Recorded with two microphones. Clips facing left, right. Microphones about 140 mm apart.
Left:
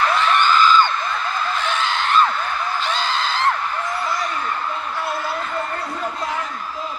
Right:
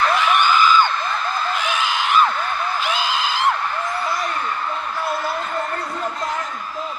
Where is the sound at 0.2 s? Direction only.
10° right (ahead or behind).